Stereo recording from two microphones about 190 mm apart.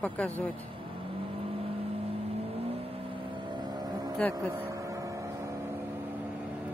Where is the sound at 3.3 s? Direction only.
20° right (ahead or behind).